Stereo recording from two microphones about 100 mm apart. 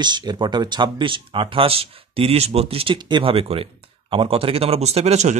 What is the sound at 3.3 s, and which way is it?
Speech, 70° right (ahead or behind).